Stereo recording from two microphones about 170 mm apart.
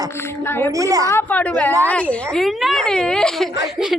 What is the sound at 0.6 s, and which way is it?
Speech, 20° right (ahead or behind).